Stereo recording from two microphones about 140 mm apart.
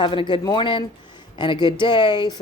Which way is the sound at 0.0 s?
35° left (ahead or behind).